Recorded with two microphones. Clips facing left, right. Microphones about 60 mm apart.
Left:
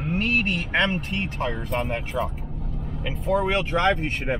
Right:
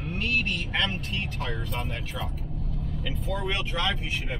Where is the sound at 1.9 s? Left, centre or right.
Left.